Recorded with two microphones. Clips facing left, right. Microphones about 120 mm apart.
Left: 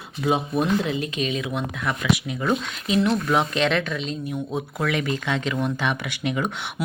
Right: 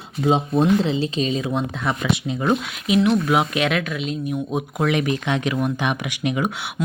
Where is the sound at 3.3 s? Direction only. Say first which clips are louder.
Right 1 dB; 10° right (ahead or behind).